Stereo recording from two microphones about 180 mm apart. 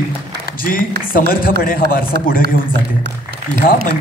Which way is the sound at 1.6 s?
55° left (ahead or behind).